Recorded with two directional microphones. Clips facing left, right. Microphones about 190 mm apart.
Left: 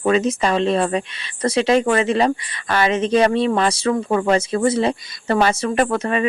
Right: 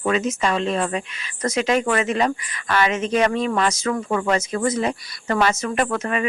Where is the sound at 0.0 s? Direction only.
35° left (ahead or behind).